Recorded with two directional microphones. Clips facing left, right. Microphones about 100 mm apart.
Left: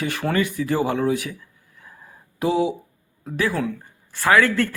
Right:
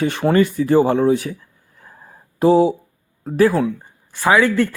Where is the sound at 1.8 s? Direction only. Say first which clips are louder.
Right 2 dB; 35° right (ahead or behind).